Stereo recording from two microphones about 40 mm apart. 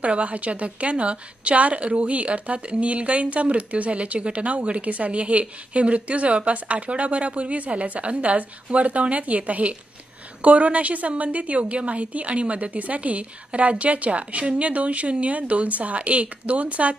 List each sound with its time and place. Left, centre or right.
0.0 s a woman's voice: right